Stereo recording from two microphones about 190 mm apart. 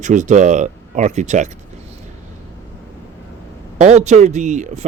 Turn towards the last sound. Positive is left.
turn(degrees=-40)  # may be behind; listen again after turning